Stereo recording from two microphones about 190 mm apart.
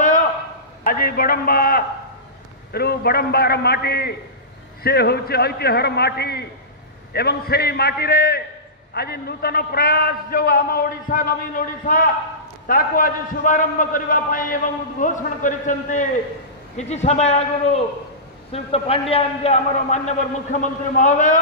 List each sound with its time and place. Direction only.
0.8 s a man's voice: 50° left (ahead or behind)